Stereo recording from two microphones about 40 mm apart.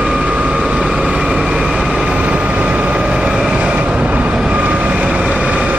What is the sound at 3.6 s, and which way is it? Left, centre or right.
Train, right.